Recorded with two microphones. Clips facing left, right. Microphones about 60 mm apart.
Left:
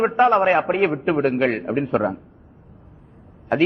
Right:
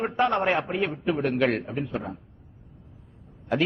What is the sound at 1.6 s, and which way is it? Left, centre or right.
Speech, left.